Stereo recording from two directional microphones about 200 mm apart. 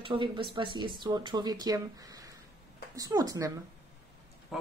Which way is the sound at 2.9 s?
20° right (ahead or behind).